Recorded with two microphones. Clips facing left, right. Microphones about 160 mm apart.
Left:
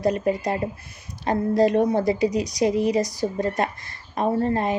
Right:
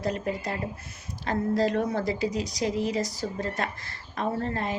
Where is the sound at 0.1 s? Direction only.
15° left (ahead or behind).